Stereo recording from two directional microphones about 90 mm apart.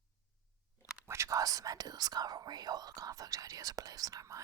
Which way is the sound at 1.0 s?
30° right (ahead or behind).